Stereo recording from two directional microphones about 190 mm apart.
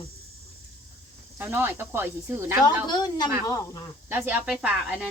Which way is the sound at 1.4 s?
10° right (ahead or behind).